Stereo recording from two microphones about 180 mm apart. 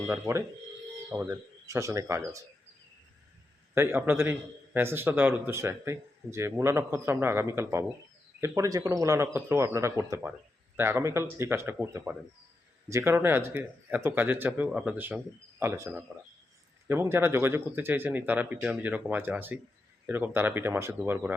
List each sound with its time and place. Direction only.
0.1 s a man's voice: 15° right (ahead or behind)
3.8 s a man's voice: 10° right (ahead or behind)